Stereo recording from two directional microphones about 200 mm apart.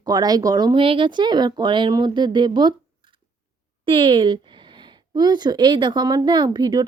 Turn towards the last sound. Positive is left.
turn(degrees=-20)  # may be behind; listen again after turning